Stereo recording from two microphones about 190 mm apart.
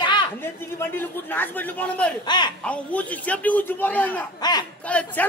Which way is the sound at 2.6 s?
5° left (ahead or behind).